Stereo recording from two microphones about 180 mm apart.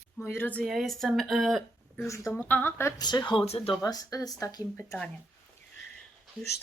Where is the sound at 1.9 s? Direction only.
15° left (ahead or behind); by 3.7 s 35° left (ahead or behind).